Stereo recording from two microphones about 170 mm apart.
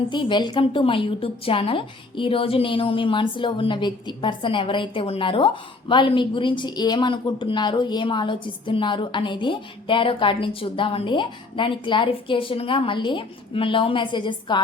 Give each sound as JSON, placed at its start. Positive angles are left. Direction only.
{"t": 0.1, "sound": "a woman's voice", "side_deg": 30}